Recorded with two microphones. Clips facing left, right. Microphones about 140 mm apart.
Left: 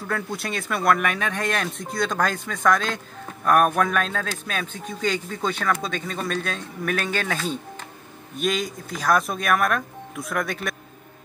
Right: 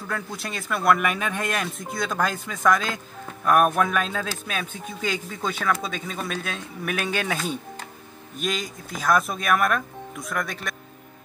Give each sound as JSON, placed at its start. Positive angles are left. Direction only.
{"t": 0.1, "sound": "speech", "side_deg": 0}
{"t": 8.4, "sound": "speech", "side_deg": 0}